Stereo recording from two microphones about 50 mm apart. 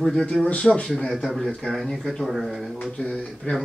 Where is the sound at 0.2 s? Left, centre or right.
Left.